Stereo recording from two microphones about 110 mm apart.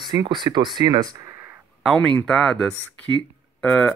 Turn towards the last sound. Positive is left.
turn(degrees=10)  # may be behind; listen again after turning